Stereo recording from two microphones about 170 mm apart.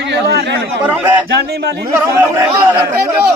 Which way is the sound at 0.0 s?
85° right.